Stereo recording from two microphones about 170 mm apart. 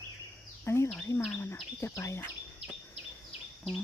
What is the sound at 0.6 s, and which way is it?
Bird vocalization, 15° left (ahead or behind).